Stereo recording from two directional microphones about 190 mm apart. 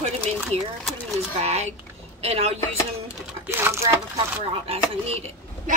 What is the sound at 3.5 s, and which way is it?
Speech, 15° right (ahead or behind).